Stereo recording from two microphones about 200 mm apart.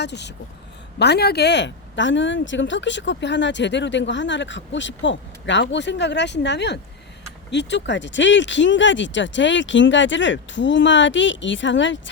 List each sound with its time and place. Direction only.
0.0 s a woman's voice: 60° left (ahead or behind)